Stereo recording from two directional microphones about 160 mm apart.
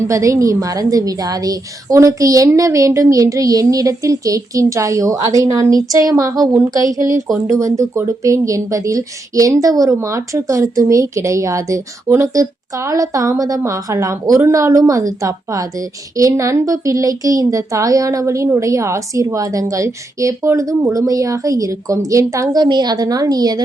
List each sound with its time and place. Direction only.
0.1 s speech: 20° right (ahead or behind)